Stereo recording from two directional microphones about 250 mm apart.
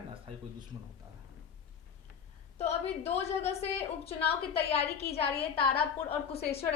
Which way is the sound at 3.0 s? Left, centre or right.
Left.